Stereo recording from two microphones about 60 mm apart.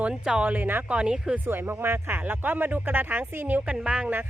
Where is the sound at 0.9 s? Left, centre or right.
Centre.